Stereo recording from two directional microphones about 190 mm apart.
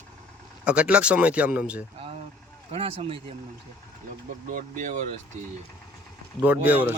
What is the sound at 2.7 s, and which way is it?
Speech, 30° right (ahead or behind).